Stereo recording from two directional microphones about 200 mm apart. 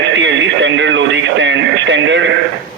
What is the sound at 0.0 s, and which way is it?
Radio, 65° right (ahead or behind).